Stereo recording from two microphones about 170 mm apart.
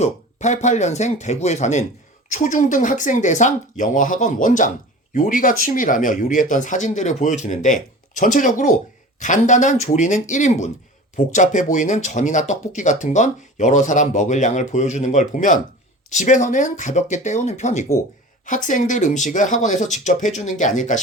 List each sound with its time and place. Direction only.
0.0 s speech: 45° left (ahead or behind)